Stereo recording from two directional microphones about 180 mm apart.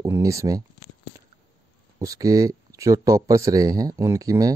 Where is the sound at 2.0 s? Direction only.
20° right (ahead or behind).